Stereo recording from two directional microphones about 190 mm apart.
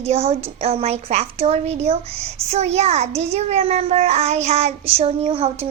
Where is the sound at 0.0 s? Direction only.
35° right (ahead or behind).